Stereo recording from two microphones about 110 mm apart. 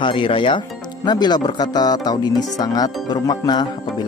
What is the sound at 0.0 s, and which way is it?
Speech, 50° left (ahead or behind).